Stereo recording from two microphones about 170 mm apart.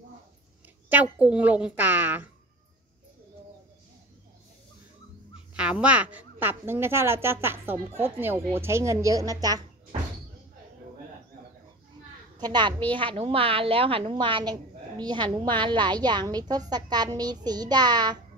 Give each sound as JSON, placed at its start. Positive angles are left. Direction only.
{"t": 1.2, "sound": "a woman's voice", "side_deg": -10}
{"t": 5.3, "sound": "a woman's voice", "side_deg": -5}
{"t": 12.4, "sound": "a woman's voice", "side_deg": -25}